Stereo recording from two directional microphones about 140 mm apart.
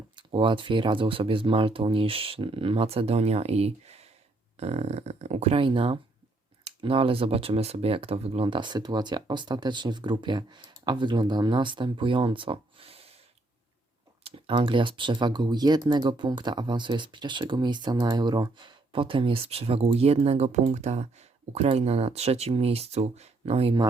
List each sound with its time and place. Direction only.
0.2 s speech: 35° right (ahead or behind)
14.3 s speech: 40° right (ahead or behind)